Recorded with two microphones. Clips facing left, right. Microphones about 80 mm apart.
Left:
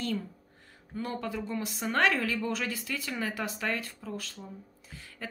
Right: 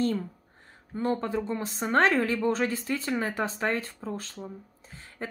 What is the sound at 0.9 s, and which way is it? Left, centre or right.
Speech, right.